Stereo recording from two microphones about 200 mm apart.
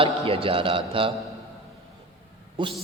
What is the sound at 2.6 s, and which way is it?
Speech, 25° right (ahead or behind).